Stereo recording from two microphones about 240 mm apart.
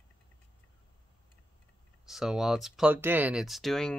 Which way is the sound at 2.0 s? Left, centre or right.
Centre.